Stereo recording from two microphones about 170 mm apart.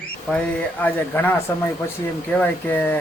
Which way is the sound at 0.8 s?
10° left (ahead or behind).